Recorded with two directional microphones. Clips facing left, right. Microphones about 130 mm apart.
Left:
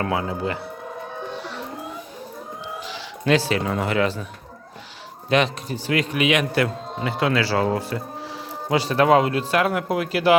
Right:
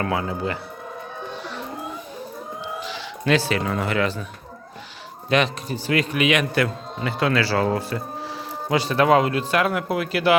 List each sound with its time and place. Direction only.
0.0 s a man's voice: 20° left (ahead or behind)
2.8 s speech: 35° left (ahead or behind)
5.3 s a man's voice: 25° left (ahead or behind)
5.7 s a man's voice: 15° left (ahead or behind)
7.0 s speech: 15° left (ahead or behind)
8.7 s speech: 35° left (ahead or behind)